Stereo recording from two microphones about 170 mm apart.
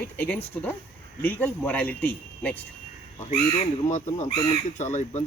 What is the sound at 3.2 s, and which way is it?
Speech, 40° left (ahead or behind).